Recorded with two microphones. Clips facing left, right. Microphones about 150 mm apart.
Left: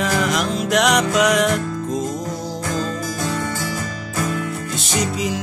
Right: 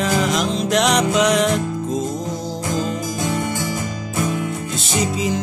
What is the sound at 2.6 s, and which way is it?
Music, 15° right (ahead or behind).